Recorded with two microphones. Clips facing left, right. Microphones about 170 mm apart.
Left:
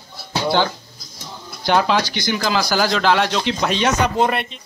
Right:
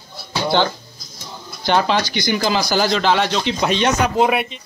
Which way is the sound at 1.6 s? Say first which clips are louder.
Even; 5° left (ahead or behind).